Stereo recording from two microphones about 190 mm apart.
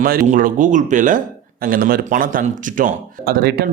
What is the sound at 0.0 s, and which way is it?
Speech, 45° right (ahead or behind).